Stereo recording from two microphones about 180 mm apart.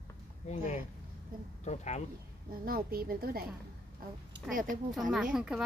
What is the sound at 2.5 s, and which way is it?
Speech, 55° right (ahead or behind).